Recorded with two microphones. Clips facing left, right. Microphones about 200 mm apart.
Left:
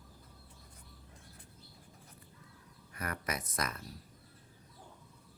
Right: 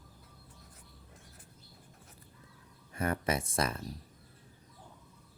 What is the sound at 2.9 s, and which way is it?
Speech, 25° right (ahead or behind).